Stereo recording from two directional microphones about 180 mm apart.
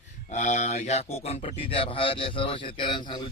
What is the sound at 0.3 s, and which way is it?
A man's voice, 40° left (ahead or behind).